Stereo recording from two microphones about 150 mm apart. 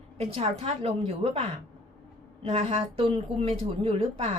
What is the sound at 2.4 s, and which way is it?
Speech, 40° right (ahead or behind).